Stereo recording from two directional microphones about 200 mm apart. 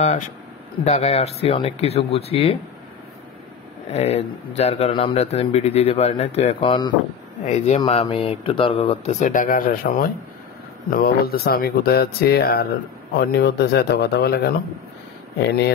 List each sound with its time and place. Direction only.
0.8 s speech: 35° left (ahead or behind)
3.9 s speech: 30° left (ahead or behind)
7.4 s speech: 35° left (ahead or behind); by 14.5 s 55° left (ahead or behind)